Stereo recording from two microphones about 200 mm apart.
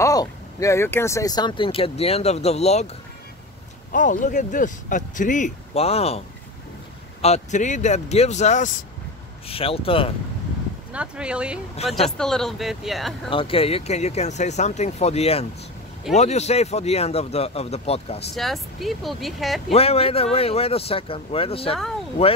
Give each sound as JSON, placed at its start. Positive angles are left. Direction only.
{"t": 0.0, "sound": "speech", "side_deg": 15}
{"t": 3.9, "sound": "speech", "side_deg": 40}
{"t": 10.9, "sound": "speech", "side_deg": -5}
{"t": 13.3, "sound": "speech", "side_deg": 25}
{"t": 18.3, "sound": "speech", "side_deg": 0}
{"t": 19.7, "sound": "speech", "side_deg": 30}